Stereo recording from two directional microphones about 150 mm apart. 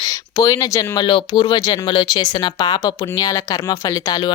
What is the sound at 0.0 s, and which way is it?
Speech, 25° left (ahead or behind).